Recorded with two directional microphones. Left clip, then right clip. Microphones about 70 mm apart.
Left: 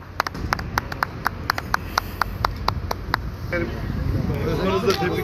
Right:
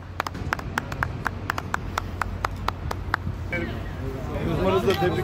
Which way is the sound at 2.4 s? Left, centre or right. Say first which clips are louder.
Left 4 dB; left.